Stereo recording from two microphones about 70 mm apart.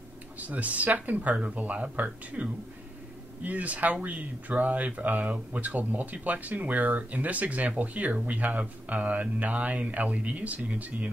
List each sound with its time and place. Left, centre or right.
0.4 s speech: right